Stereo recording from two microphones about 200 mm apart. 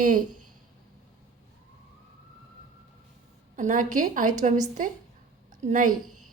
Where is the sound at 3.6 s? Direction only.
40° right (ahead or behind).